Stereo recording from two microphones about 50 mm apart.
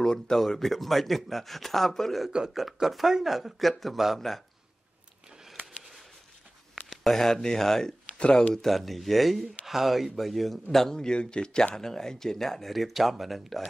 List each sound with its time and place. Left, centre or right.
0.0 s speech: centre
6.9 s speech: centre